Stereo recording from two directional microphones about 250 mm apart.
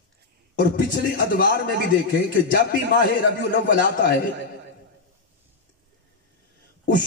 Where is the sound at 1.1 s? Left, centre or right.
Left.